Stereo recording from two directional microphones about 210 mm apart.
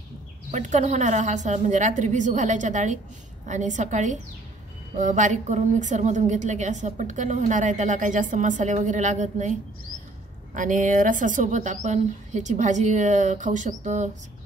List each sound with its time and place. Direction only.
0.5 s a woman's voice: 35° right (ahead or behind)